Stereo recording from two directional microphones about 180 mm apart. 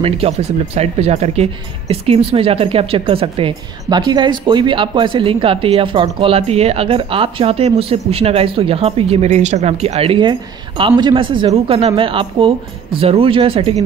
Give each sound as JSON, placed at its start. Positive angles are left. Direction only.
{"t": 0.0, "sound": "speech", "side_deg": -35}